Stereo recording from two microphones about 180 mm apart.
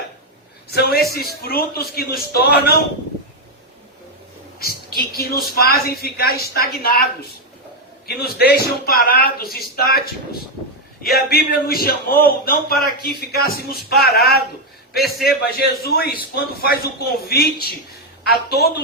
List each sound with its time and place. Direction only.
0.7 s a man's voice: 60° left (ahead or behind)
4.6 s a man's voice: 60° left (ahead or behind)
8.2 s a man's voice: 60° left (ahead or behind)
11.0 s a man's voice: 60° left (ahead or behind)
15.0 s a man's voice: 60° left (ahead or behind)